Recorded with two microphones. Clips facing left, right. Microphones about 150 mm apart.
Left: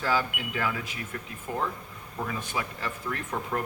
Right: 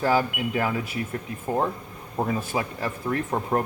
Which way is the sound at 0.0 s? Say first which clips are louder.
Right 6 dB; 40° right (ahead or behind).